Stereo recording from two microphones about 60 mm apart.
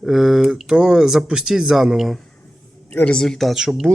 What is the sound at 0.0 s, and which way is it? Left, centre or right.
Speech, centre.